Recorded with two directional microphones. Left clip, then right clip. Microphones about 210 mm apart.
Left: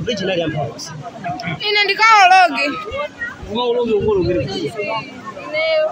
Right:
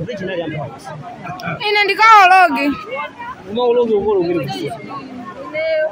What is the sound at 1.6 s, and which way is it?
Speech, 45° right (ahead or behind).